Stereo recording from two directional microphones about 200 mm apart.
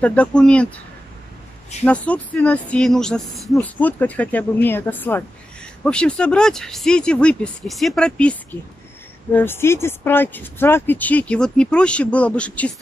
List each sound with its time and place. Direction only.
0.0 s speech: 5° left (ahead or behind)
1.9 s speech: 5° left (ahead or behind)